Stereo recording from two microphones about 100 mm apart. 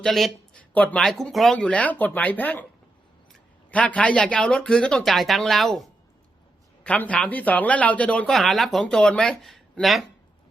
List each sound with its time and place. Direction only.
0.0 s speech: 5° left (ahead or behind)
0.7 s speech: 15° left (ahead or behind)
1.0 s speech: centre (ahead or behind)
1.5 s speech: 15° left (ahead or behind)
3.7 s speech: 15° left (ahead or behind)
6.8 s speech: 15° left (ahead or behind)
8.3 s speech: centre (ahead or behind)